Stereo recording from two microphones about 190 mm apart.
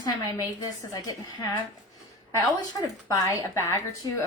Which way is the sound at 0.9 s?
20° left (ahead or behind).